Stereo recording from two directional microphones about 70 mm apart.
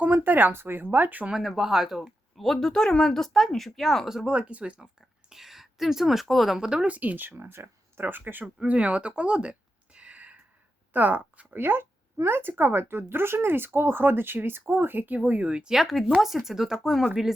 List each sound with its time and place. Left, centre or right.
0.0 s speech: right
1.3 s speech: centre
4.3 s speech: centre
6.7 s speech: centre
8.6 s a sound: centre
10.9 s speech: right; by 17.1 s centre